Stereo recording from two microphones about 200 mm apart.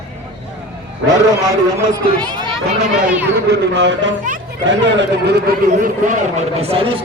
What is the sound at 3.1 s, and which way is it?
Speech, 10° right (ahead or behind).